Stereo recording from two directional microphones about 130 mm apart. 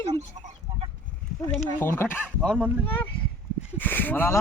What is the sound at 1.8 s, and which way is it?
Speech, 20° left (ahead or behind).